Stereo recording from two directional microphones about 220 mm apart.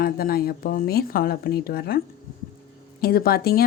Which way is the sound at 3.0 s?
45° left (ahead or behind).